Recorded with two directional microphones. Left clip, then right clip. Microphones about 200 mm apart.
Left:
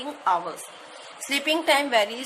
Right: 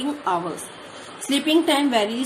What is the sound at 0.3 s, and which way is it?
A woman's voice, 25° left (ahead or behind).